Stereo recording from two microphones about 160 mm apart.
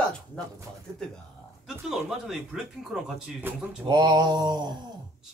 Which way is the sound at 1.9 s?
Centre (ahead or behind).